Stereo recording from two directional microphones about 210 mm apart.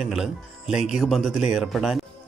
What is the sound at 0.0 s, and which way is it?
Speech, centre (ahead or behind).